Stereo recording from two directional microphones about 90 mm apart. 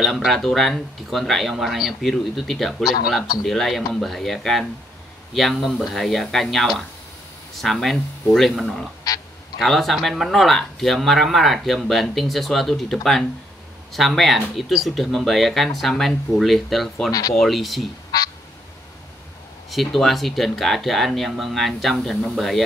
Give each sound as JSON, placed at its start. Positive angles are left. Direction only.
{"t": 0.0, "sound": "speech", "side_deg": 0}
{"t": 18.1, "sound": "a sound", "side_deg": 45}
{"t": 19.7, "sound": "speech", "side_deg": 0}